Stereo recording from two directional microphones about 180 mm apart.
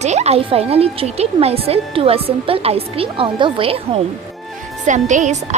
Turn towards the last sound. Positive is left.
turn(degrees=-40)  # may be behind; listen again after turning